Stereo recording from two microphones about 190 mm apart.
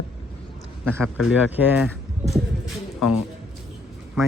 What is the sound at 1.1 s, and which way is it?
Speech, 5° right (ahead or behind).